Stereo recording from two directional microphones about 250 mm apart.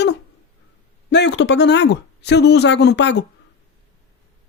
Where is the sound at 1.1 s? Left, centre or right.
Left.